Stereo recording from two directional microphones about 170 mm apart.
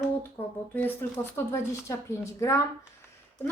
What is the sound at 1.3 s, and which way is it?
A woman's voice, 15° left (ahead or behind).